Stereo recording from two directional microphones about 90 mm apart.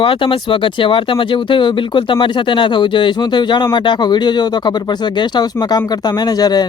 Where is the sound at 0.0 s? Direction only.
75° left (ahead or behind).